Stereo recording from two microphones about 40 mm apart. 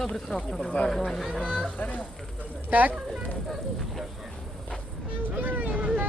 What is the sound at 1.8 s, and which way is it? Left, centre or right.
Speech, left.